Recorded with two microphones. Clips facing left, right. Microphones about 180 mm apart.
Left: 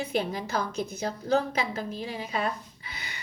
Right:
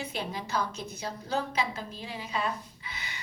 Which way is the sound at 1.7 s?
45° left (ahead or behind).